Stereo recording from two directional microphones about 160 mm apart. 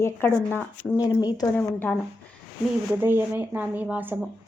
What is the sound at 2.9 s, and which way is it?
Speech, 10° right (ahead or behind).